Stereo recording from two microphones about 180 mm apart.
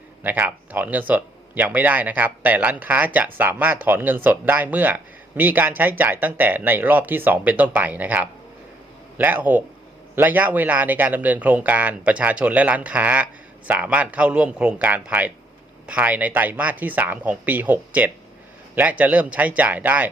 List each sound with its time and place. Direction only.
0.2 s speech: 10° right (ahead or behind)